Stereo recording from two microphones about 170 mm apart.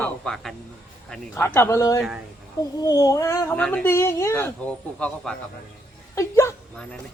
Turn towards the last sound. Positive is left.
turn(degrees=15)  # may be behind; listen again after turning